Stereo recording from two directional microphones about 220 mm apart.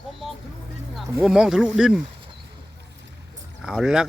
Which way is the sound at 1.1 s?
5° right (ahead or behind).